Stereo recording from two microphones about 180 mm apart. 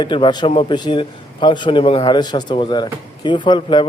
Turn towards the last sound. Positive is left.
turn(degrees=25)  # may be behind; listen again after turning